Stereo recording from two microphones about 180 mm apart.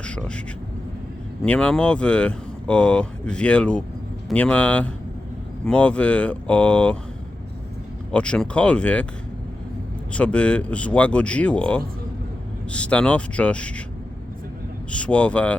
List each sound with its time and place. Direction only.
0.0 s speech: 5° left (ahead or behind)
1.4 s speech: 5° left (ahead or behind)
8.1 s speech: 5° left (ahead or behind)
10.1 s speech: 5° left (ahead or behind)
14.8 s speech: 5° left (ahead or behind)